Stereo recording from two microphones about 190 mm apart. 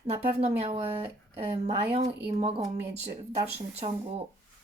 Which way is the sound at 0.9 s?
30° right (ahead or behind).